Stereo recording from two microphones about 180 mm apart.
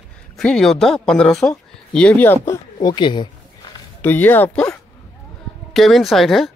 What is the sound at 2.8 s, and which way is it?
Speech, 25° left (ahead or behind).